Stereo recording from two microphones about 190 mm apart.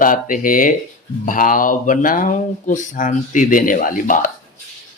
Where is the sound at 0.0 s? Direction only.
45° left (ahead or behind).